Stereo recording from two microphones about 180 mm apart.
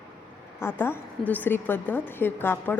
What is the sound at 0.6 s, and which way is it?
A woman's voice, 10° left (ahead or behind).